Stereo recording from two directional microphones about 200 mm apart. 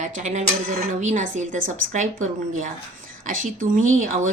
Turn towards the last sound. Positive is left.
turn(degrees=-40)  # may be behind; listen again after turning